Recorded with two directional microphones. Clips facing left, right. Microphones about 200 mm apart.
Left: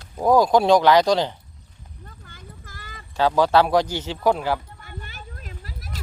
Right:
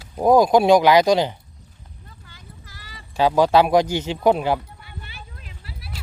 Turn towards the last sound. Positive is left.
turn(degrees=45)  # may be behind; listen again after turning